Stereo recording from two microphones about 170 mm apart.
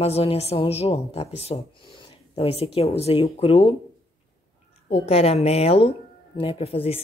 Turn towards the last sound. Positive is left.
turn(degrees=35)  # may be behind; listen again after turning